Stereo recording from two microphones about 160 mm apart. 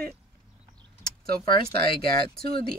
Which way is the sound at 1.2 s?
70° right (ahead or behind).